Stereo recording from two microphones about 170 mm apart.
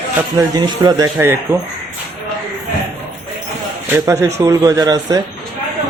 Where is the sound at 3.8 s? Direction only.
15° right (ahead or behind).